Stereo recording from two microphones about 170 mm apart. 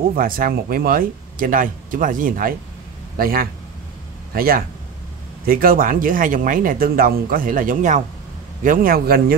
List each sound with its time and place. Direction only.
0.1 s speech: 55° right (ahead or behind)